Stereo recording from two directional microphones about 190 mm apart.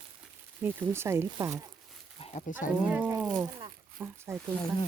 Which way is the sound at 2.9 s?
10° right (ahead or behind).